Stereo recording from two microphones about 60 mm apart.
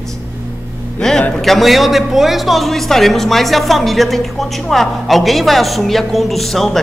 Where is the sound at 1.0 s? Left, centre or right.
Centre.